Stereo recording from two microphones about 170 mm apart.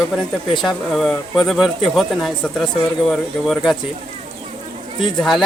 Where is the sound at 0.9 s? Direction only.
Centre (ahead or behind).